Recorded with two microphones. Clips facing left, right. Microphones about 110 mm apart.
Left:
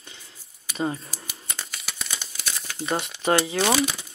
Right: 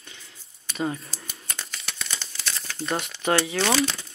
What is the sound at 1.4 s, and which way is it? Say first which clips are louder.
Crumpling: even; 10° left (ahead or behind).